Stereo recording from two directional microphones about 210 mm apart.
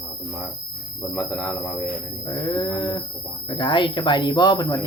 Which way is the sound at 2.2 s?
20° left (ahead or behind).